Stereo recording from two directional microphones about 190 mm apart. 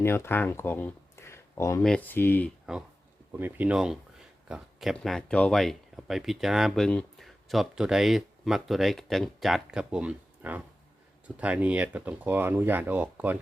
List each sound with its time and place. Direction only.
0.0 s speech: 15° left (ahead or behind)
2.7 s speech: centre (ahead or behind)